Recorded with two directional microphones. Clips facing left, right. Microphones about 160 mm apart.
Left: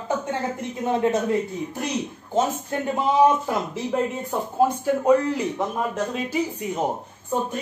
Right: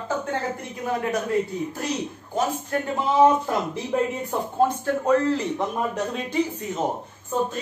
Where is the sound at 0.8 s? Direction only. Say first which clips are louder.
Left 4 dB; 25° left (ahead or behind).